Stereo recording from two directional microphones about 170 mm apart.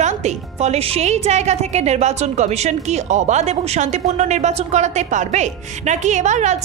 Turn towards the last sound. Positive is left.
turn(degrees=-45)  # may be behind; listen again after turning